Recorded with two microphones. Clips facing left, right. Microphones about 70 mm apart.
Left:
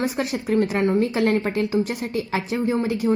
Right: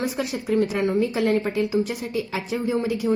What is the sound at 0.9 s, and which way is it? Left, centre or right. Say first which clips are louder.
Speech: left 1 dB; left.